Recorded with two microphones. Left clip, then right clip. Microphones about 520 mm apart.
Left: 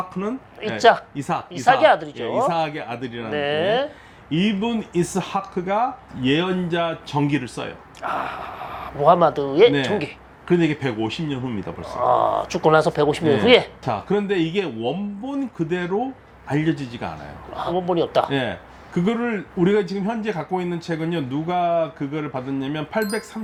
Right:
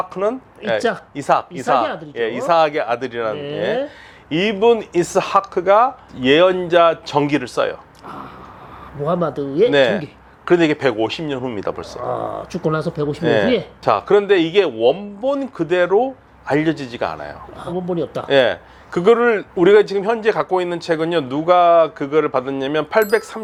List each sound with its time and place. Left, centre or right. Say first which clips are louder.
0.1 s speech: right 8 dB; right
0.8 s speech: left 9 dB; left
1.1 s speech: right 9 dB; right
3.3 s speech: left 1 dB; left
4.3 s speech: right 9 dB; right
8.0 s speech: left 10 dB; left
10.4 s speech: right 6 dB; right
12.0 s speech: left 6 dB; left
13.8 s speech: right 9 dB; right
17.6 s speech: left 2 dB; left
18.3 s speech: right 10 dB; right